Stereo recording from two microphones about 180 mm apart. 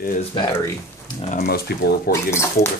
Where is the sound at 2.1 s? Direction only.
15° left (ahead or behind).